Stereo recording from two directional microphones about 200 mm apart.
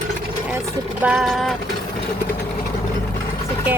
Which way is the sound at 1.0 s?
5° right (ahead or behind).